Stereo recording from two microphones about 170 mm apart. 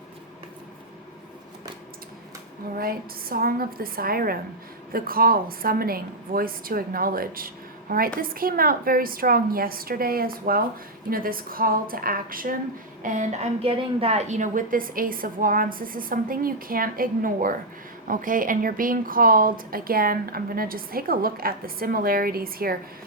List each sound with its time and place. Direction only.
2.7 s a woman's voice: 60° right (ahead or behind)